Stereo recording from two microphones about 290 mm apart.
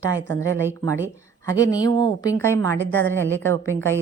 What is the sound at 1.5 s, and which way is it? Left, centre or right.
A woman's voice, centre.